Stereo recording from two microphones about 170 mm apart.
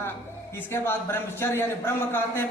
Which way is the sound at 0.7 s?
15° left (ahead or behind).